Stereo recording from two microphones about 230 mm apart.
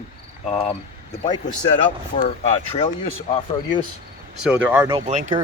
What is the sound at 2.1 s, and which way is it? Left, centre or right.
Speech, left.